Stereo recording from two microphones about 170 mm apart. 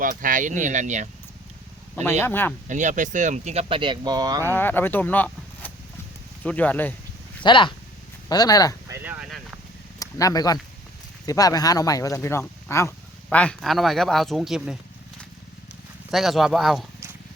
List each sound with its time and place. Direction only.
0.0 s speech: 50° right (ahead or behind)
2.2 s speech: 10° left (ahead or behind)
2.6 s speech: 45° right (ahead or behind); by 4.5 s 20° right (ahead or behind)
4.5 s speech: 10° left (ahead or behind)
7.4 s speech: 30° left (ahead or behind)
8.9 s a sound: 10° right (ahead or behind)
10.0 s speech: 20° left (ahead or behind); by 14.8 s 5° right (ahead or behind)
16.1 s speech: centre (ahead or behind)